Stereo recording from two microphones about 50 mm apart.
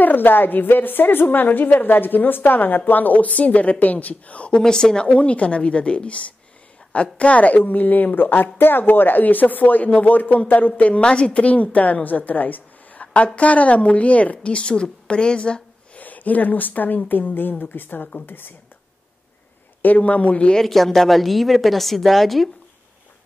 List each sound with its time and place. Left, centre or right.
0.0 s a woman's voice: left; by 5.0 s centre
5.0 s a woman's voice: left
16.0 s a woman's voice: left
19.8 s a woman's voice: left
20.5 s a woman's voice: centre